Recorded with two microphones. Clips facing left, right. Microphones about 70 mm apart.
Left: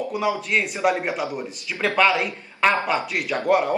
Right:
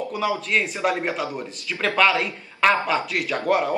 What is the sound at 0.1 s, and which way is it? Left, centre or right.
Speech, centre.